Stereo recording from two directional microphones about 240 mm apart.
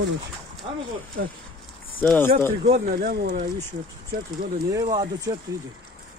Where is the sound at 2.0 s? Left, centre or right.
Centre.